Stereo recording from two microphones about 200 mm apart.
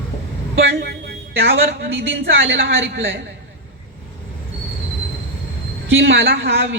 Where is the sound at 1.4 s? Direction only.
65° right (ahead or behind).